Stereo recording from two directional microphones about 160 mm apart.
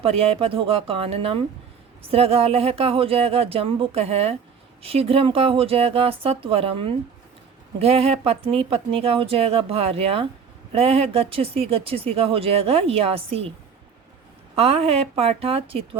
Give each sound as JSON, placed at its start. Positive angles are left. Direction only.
{"t": 0.0, "sound": "speech", "side_deg": -40}
{"t": 14.5, "sound": "speech", "side_deg": -40}